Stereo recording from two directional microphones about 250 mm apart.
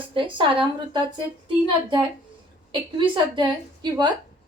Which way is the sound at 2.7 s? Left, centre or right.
Centre.